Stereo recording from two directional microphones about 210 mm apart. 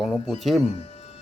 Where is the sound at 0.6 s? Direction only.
30° left (ahead or behind).